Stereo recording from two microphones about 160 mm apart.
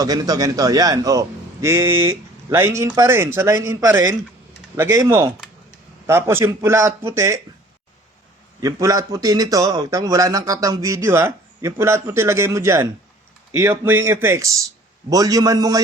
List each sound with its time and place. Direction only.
0.0 s a man's voice: 25° right (ahead or behind)
8.6 s a man's voice: 20° right (ahead or behind)